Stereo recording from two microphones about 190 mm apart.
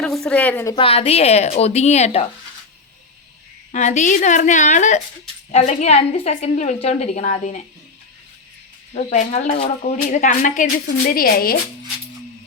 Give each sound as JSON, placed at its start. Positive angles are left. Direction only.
{"t": 0.0, "sound": "a woman's voice", "side_deg": 5}
{"t": 0.8, "sound": "speech", "side_deg": 30}
{"t": 3.7, "sound": "speech", "side_deg": 40}
{"t": 8.9, "sound": "speech", "side_deg": 35}